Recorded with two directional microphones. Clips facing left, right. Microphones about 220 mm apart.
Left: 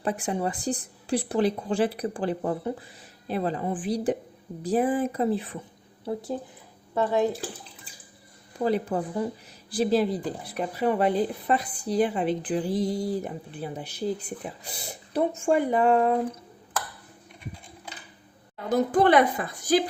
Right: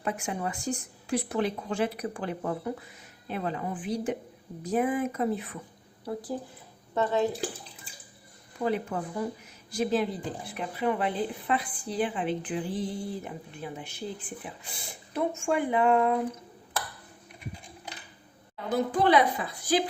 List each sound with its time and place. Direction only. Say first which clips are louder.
0.0 s speech: left 4 dB; 35° left (ahead or behind)
6.9 s speech: left 2 dB; 10° left (ahead or behind)
8.6 s speech: left 4 dB; 35° left (ahead or behind)
18.7 s a woman's voice: left 3 dB; 50° left (ahead or behind)